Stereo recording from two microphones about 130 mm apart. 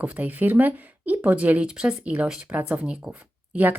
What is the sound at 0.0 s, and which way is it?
Speech, 10° right (ahead or behind).